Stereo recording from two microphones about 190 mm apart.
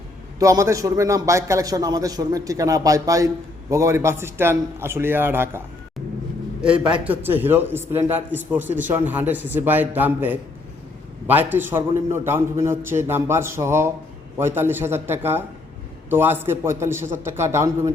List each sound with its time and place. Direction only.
0.3 s a man's voice: 15° right (ahead or behind)